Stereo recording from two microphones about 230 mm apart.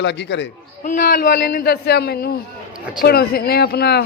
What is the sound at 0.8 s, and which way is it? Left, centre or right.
Speech, left.